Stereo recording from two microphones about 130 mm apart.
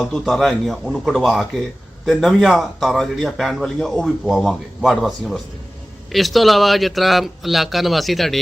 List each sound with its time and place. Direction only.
0.0 s a man's voice: centre (ahead or behind)